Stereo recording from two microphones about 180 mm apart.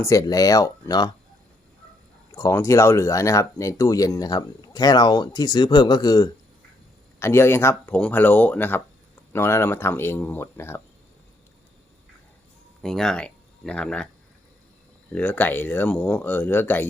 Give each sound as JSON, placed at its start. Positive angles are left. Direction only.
{"t": 0.0, "sound": "speech", "side_deg": 20}
{"t": 2.3, "sound": "speech", "side_deg": 15}
{"t": 12.8, "sound": "speech", "side_deg": 0}
{"t": 15.1, "sound": "speech", "side_deg": 10}